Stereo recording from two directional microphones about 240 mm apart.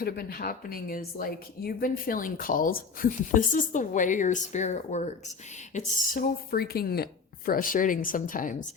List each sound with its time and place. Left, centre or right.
0.0 s speech: left